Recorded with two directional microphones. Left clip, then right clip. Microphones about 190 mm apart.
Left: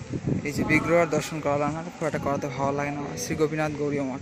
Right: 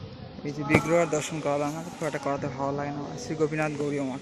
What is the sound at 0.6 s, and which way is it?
Speech, centre (ahead or behind).